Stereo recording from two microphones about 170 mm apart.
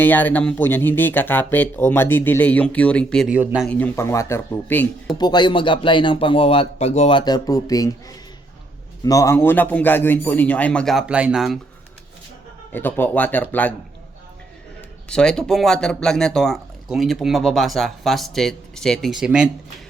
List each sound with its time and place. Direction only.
0.0 s speech: 10° left (ahead or behind)
3.3 s speech: 10° right (ahead or behind)
3.7 s speech: 10° left (ahead or behind)
5.1 s speech: 25° left (ahead or behind)
7.2 s speech: 25° left (ahead or behind)
9.0 s speech: 20° left (ahead or behind); by 11.6 s centre (ahead or behind)
12.7 s speech: 10° left (ahead or behind)
15.1 s speech: 5° left (ahead or behind)